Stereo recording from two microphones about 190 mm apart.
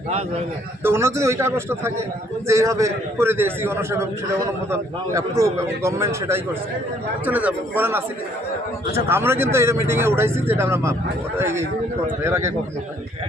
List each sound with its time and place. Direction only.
0.8 s speech: 10° right (ahead or behind)
9.0 s speech: 10° right (ahead or behind)